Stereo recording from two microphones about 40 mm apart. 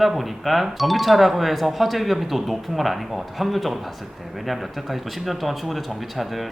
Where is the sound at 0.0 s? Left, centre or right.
Centre.